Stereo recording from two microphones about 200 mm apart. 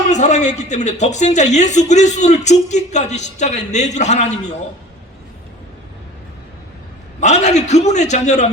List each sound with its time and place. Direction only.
0.1 s a man's voice: 35° left (ahead or behind)
7.2 s a man's voice: 35° left (ahead or behind)